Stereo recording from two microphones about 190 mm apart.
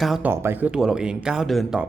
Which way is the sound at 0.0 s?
Centre (ahead or behind).